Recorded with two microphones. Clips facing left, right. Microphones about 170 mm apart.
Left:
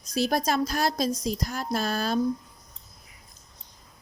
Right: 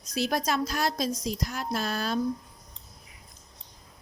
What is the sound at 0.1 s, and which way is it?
Speech, 35° left (ahead or behind).